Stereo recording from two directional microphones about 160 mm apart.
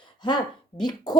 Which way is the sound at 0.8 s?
25° left (ahead or behind).